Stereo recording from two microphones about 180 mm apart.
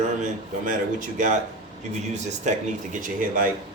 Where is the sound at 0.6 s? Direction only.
45° right (ahead or behind).